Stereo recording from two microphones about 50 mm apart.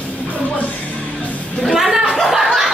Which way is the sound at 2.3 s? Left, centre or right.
Centre.